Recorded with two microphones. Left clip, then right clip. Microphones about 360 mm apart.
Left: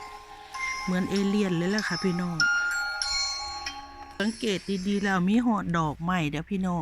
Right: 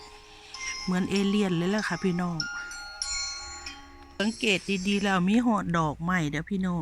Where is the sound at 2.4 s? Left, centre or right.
Left.